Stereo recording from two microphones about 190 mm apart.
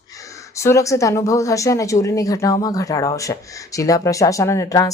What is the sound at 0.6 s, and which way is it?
Speech, 15° left (ahead or behind).